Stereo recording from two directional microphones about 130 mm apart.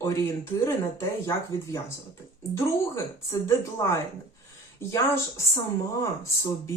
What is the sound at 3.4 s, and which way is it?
Speech, 25° left (ahead or behind).